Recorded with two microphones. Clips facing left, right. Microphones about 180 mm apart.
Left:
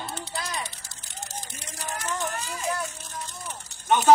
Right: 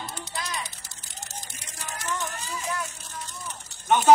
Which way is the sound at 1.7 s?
40° left (ahead or behind).